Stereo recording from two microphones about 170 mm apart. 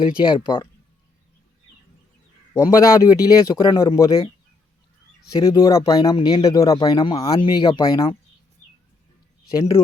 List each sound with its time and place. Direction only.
0.3 s speech: 30° left (ahead or behind)
2.5 s speech: 20° left (ahead or behind)
5.4 s speech: 25° left (ahead or behind)